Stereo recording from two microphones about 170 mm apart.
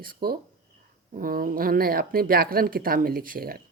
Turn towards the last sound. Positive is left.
turn(degrees=-60)  # may be behind; listen again after turning